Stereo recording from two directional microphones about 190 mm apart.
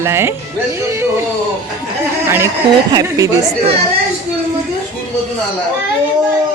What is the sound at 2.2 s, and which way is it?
Speech, 15° right (ahead or behind).